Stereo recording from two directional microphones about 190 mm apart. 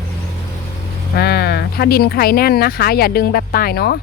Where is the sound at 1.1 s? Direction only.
55° left (ahead or behind).